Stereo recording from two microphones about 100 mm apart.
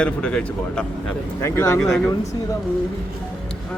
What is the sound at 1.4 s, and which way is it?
Speech, 30° left (ahead or behind).